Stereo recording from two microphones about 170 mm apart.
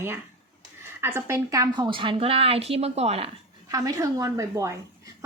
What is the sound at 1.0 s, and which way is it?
A woman's voice, 15° right (ahead or behind).